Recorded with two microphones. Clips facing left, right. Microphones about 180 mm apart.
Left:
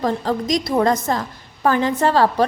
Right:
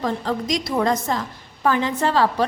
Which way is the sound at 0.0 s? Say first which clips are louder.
Left 3 dB; 40° left (ahead or behind).